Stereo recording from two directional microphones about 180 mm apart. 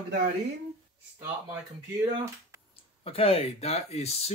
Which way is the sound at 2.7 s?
30° left (ahead or behind).